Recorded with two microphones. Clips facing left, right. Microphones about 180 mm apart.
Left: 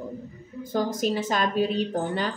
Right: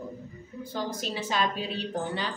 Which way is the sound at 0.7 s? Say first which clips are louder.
Left 8 dB; 45° left (ahead or behind).